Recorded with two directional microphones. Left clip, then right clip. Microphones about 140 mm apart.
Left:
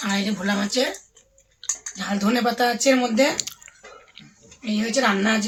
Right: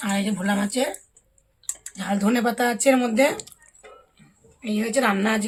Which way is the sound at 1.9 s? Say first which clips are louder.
Even; 25° right (ahead or behind).